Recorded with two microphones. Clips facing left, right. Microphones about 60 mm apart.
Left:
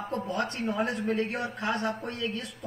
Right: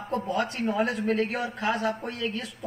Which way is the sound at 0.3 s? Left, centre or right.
Right.